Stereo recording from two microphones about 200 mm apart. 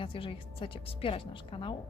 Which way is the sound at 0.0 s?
25° left (ahead or behind).